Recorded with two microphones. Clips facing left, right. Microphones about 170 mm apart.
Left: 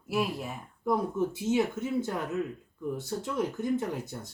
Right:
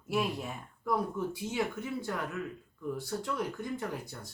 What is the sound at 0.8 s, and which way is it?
Speech, 20° left (ahead or behind).